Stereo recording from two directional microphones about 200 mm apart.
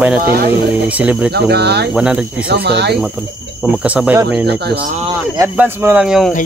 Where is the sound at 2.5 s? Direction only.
55° right (ahead or behind).